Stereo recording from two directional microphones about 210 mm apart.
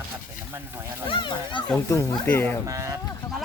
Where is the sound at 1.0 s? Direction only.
20° left (ahead or behind).